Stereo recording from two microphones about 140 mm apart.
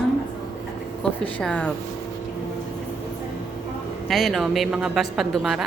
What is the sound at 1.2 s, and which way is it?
Speech, 10° left (ahead or behind).